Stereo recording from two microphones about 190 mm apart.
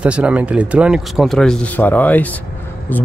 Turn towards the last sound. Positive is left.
turn(degrees=10)  # may be behind; listen again after turning